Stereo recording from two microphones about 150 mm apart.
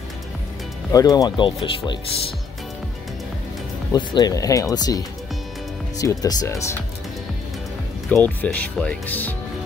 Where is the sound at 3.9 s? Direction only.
25° left (ahead or behind).